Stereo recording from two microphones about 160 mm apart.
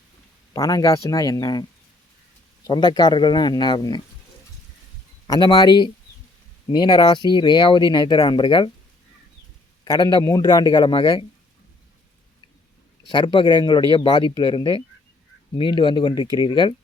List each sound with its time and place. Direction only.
0.5 s speech: 20° left (ahead or behind)
2.6 s speech: 25° left (ahead or behind)
5.3 s speech: 25° left (ahead or behind)
9.8 s speech: 25° left (ahead or behind)
13.1 s speech: 30° left (ahead or behind)